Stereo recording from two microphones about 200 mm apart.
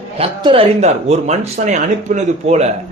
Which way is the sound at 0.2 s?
30° right (ahead or behind).